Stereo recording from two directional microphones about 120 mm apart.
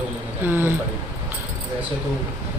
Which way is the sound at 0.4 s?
15° right (ahead or behind).